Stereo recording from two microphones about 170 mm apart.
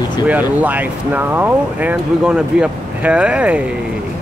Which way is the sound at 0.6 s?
10° right (ahead or behind).